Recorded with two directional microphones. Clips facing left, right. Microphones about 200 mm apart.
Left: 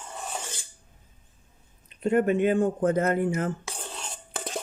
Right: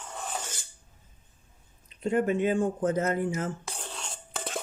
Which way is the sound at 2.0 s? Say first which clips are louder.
Left 3 dB; 60° left (ahead or behind).